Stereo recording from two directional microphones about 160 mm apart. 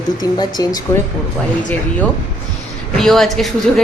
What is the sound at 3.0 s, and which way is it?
Speech, centre (ahead or behind).